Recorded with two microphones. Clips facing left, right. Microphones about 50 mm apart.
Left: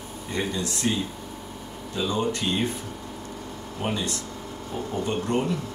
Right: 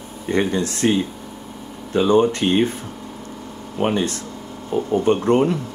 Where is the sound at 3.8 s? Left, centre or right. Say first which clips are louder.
Right 8 dB; right.